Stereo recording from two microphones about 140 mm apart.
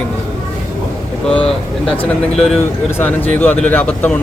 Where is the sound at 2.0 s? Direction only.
Centre (ahead or behind).